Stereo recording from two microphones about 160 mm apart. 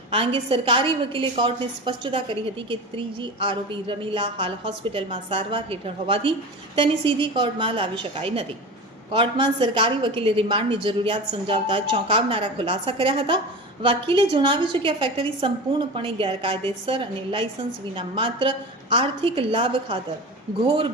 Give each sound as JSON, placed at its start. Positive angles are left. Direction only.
{"t": 0.1, "sound": "a woman's voice", "side_deg": -35}